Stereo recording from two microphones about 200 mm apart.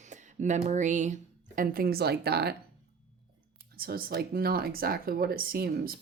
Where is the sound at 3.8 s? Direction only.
45° right (ahead or behind).